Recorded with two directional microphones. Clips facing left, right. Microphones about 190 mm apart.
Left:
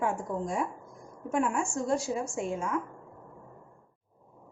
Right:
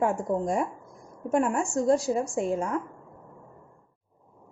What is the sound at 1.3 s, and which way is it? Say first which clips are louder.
Speech: right 4 dB; 40° right (ahead or behind).